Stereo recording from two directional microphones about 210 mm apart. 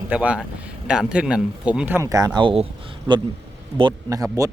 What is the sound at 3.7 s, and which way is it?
Speech, 20° right (ahead or behind).